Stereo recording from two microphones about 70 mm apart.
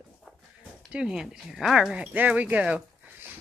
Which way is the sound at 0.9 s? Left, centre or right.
Centre.